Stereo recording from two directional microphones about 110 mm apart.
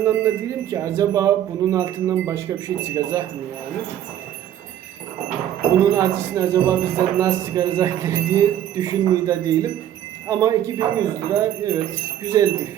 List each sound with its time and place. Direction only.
0.0 s speech: 30° right (ahead or behind)
1.7 s chime: 30° right (ahead or behind)
5.8 s chime: 30° right (ahead or behind)